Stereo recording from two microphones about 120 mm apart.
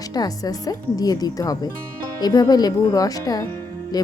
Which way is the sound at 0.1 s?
30° left (ahead or behind).